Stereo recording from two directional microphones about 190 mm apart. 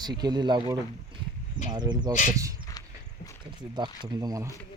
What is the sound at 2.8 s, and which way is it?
Horse, 20° left (ahead or behind).